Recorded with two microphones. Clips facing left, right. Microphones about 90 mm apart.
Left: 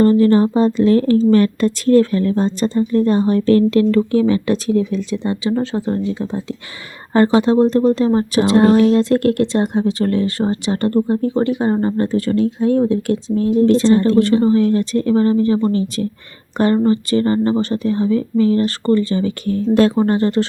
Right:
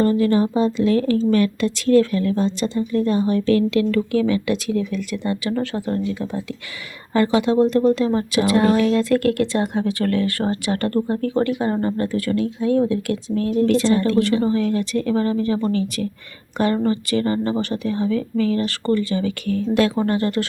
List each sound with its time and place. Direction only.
0.0 s speech: 40° left (ahead or behind)